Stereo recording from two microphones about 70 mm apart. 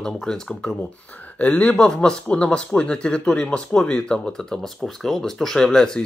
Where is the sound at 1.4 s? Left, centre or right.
Left.